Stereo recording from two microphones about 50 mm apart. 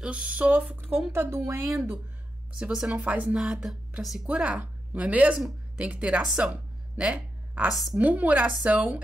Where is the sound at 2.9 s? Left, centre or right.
Right.